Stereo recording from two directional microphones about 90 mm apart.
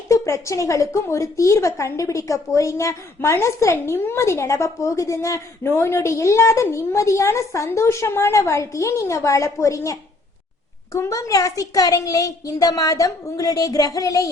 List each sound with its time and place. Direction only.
0.1 s a woman's voice: 35° left (ahead or behind)